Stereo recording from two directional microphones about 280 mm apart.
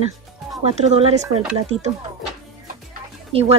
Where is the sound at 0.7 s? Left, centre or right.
Right.